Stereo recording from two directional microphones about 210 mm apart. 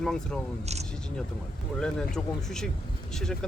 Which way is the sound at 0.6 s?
30° right (ahead or behind).